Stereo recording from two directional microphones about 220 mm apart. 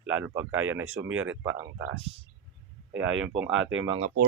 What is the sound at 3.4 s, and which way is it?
Speech, 5° right (ahead or behind).